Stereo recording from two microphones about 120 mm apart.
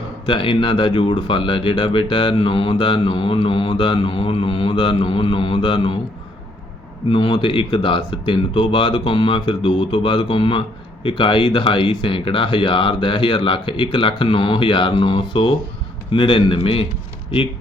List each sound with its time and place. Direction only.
0.3 s speech: 45° left (ahead or behind)
7.1 s speech: 40° left (ahead or behind)